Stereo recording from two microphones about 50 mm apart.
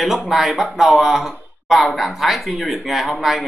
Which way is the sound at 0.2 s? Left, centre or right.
Centre.